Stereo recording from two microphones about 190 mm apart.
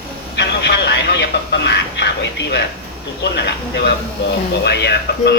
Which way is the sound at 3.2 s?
65° left (ahead or behind).